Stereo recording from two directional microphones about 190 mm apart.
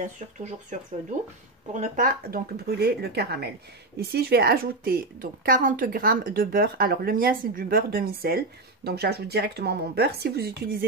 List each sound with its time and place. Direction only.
0.0 s a woman's voice: 40° right (ahead or behind); by 10.9 s 55° right (ahead or behind)